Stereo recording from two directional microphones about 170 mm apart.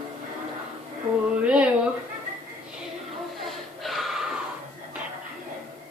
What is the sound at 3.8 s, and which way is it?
Gasp, centre (ahead or behind).